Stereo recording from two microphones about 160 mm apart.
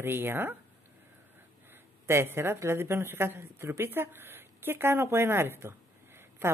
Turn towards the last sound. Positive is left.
turn(degrees=-15)  # may be behind; listen again after turning